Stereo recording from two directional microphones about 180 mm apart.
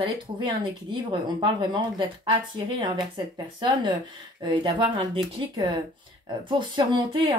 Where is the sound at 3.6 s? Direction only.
25° right (ahead or behind).